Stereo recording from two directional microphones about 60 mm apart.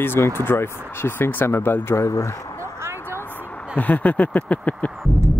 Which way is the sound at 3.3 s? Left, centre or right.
Left.